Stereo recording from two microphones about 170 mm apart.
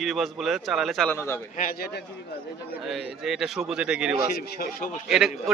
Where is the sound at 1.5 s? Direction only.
55° left (ahead or behind).